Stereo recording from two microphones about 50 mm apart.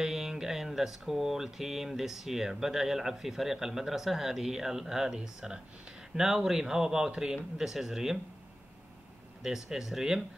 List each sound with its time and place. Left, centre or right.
0.0 s mantra: centre
9.4 s mantra: centre